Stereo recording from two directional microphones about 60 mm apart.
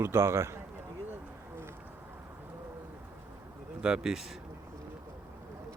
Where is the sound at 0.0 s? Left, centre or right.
Right.